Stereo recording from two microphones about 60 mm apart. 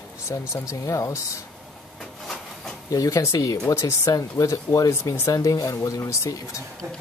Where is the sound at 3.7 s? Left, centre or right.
Left.